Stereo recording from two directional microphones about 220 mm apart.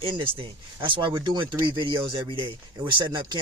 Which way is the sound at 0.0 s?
25° right (ahead or behind).